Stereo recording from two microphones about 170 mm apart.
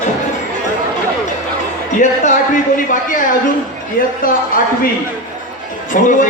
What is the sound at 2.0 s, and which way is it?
A man's voice, 45° left (ahead or behind).